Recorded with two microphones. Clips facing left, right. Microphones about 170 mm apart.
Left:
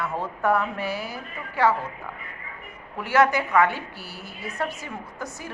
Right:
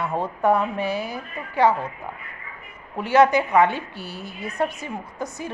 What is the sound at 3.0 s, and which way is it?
A woman's voice, 20° right (ahead or behind).